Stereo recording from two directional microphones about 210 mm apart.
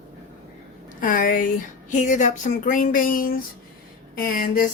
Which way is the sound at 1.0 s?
40° left (ahead or behind).